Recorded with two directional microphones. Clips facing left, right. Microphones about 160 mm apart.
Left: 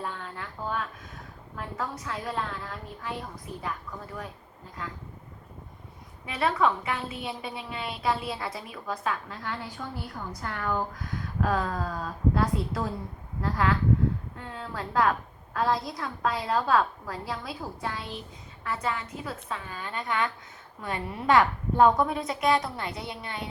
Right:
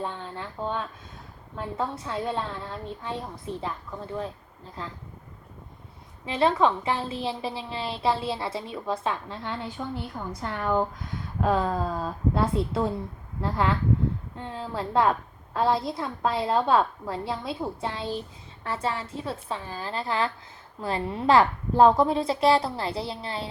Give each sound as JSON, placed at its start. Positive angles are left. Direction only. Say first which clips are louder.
{"t": 0.0, "sound": "a woman's voice", "louder": "right 3 dB", "side_deg": -25}
{"t": 6.2, "sound": "a woman's voice", "louder": "right 3 dB", "side_deg": -25}